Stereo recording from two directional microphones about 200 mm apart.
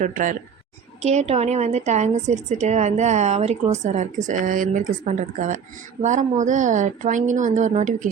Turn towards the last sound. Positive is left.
turn(degrees=-35)  # may be behind; listen again after turning